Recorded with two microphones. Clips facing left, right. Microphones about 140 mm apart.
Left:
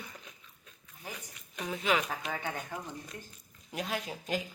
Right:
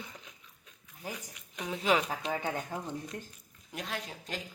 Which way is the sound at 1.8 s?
30° right (ahead or behind).